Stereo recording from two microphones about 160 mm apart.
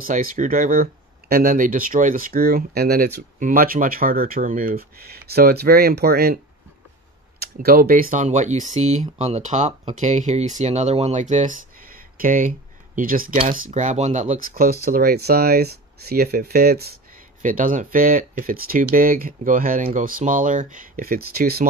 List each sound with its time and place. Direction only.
0.0 s speech: 60° right (ahead or behind); by 3.1 s 80° right
3.3 s speech: 60° right (ahead or behind)
14.5 s speech: 65° right (ahead or behind)
17.4 s speech: 55° right (ahead or behind); by 21.6 s 75° right (ahead or behind)